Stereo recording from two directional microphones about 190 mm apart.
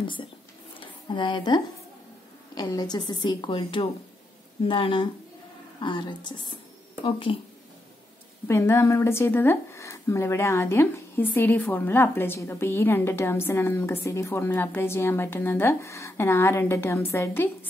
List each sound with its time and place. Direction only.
0.0 s a woman's voice: 25° left (ahead or behind)
0.7 s a sound: 25° left (ahead or behind)
2.5 s a woman's voice: 20° left (ahead or behind)
8.5 s speech: 15° left (ahead or behind)